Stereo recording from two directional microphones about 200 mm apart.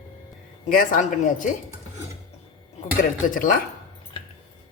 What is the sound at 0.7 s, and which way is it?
Speech, 45° left (ahead or behind).